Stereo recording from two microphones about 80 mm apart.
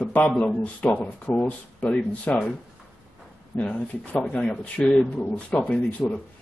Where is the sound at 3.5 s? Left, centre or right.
Centre.